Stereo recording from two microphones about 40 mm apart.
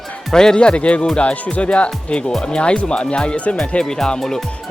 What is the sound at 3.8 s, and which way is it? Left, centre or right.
Speech, centre.